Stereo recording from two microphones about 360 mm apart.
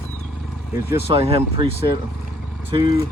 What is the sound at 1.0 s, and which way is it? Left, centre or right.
Speech, centre.